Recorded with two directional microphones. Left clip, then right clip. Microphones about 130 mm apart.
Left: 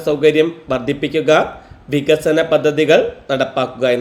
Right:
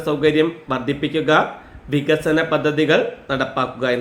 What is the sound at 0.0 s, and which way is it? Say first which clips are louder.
A man's voice: left 4 dB; 20° left (ahead or behind).